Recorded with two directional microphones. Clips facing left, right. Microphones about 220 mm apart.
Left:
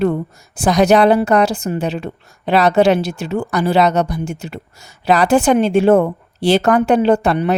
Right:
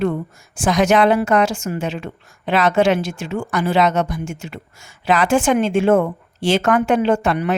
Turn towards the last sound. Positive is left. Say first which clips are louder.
# left 3 dB
turn(degrees=35)  # may be behind; listen again after turning